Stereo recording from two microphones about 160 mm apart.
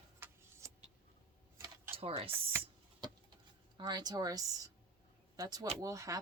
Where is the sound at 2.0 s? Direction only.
35° right (ahead or behind).